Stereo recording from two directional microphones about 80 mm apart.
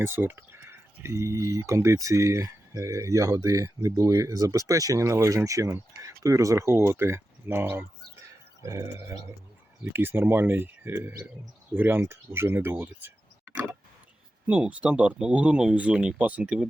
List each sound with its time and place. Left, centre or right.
0.0 s speech: right; by 16.6 s centre